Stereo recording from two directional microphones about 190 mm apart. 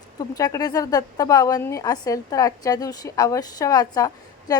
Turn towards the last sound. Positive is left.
turn(degrees=20)  # may be behind; listen again after turning